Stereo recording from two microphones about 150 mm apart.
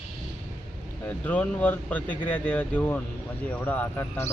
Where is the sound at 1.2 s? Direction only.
10° left (ahead or behind).